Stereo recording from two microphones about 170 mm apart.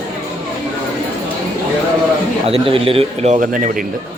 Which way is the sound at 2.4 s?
35° right (ahead or behind).